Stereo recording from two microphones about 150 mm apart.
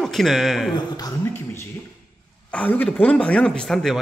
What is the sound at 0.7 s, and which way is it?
Speech, 25° left (ahead or behind).